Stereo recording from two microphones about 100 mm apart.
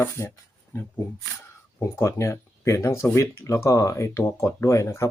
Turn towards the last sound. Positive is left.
turn(degrees=30)  # may be behind; listen again after turning